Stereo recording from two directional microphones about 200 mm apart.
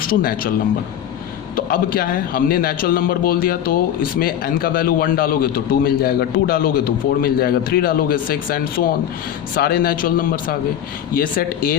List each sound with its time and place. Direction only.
0.0 s a man's voice: 45° left (ahead or behind)
1.5 s a man's voice: 45° left (ahead or behind)